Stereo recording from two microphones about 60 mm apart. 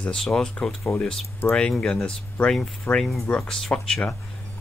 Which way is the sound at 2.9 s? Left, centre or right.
Left.